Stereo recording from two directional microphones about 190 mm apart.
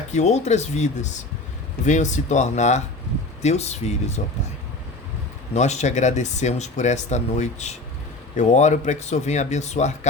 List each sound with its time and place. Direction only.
0.1 s speech: 35° left (ahead or behind)
5.5 s speech: 35° left (ahead or behind)